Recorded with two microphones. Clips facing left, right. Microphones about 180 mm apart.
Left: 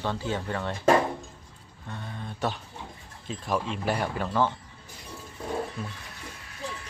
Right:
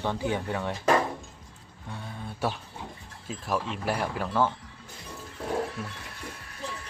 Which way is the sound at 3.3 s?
Centre (ahead or behind).